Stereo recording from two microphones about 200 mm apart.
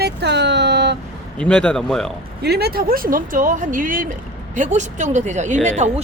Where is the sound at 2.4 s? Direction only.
55° right (ahead or behind).